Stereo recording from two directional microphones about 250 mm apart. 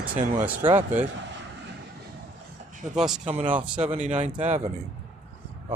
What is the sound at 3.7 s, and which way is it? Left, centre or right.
Speech, right.